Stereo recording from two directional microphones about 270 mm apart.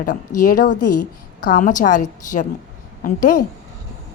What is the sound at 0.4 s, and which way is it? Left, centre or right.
A woman's voice, left.